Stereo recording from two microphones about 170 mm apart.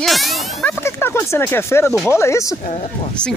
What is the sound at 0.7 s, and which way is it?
Speech, 15° left (ahead or behind).